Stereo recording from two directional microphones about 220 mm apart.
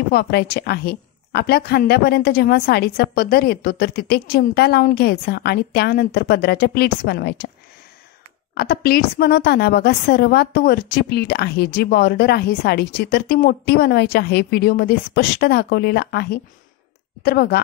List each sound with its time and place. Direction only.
0.1 s a woman's voice: 45° left (ahead or behind)
8.5 s a woman's voice: 45° left (ahead or behind)